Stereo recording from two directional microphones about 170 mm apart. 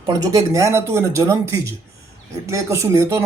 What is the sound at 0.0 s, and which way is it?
Speech, 20° right (ahead or behind).